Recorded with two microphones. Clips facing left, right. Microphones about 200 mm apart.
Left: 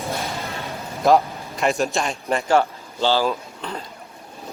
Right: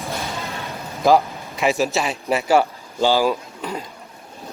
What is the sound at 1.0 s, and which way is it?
A man's voice, centre (ahead or behind).